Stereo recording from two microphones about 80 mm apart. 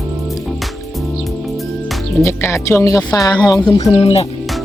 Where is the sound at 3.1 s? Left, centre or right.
Left.